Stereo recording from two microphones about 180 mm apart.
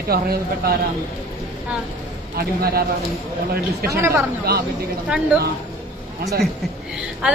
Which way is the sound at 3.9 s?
15° right (ahead or behind).